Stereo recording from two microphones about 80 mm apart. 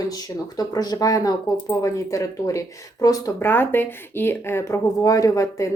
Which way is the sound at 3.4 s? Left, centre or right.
Left.